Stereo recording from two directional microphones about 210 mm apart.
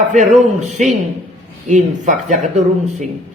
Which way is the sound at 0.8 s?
35° right (ahead or behind).